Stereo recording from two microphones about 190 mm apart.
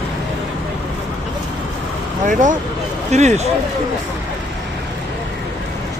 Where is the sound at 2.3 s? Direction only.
40° right (ahead or behind).